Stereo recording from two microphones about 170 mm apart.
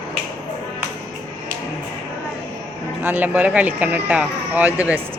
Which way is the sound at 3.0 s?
10° right (ahead or behind).